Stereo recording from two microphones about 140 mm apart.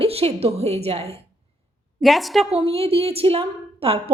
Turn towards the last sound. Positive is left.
turn(degrees=-40)  # may be behind; listen again after turning